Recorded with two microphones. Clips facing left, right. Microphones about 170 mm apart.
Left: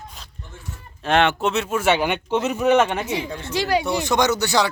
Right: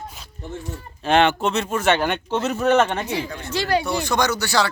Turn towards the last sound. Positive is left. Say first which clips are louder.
# left 2 dB
turn(degrees=20)  # may be behind; listen again after turning